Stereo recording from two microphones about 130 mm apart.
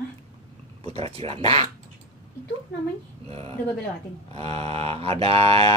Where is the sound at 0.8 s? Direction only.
50° right (ahead or behind).